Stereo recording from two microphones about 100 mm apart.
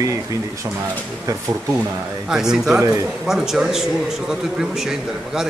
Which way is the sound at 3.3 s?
5° right (ahead or behind).